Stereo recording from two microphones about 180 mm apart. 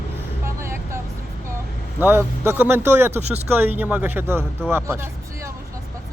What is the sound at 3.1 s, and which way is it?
Speech, 35° right (ahead or behind).